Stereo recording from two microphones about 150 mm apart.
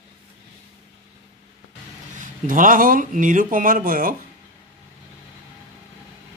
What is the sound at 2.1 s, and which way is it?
Speech, 65° right (ahead or behind).